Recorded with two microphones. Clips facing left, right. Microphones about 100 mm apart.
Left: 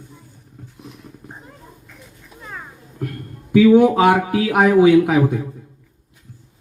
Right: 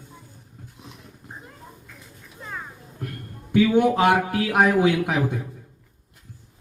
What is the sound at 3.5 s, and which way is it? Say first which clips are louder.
Speech: left 7 dB; centre (ahead or behind).